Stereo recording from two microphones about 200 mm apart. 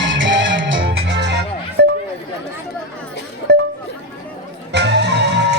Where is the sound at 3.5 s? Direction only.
60° right (ahead or behind).